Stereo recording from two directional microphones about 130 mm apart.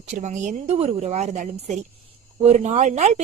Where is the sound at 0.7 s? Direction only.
55° right (ahead or behind).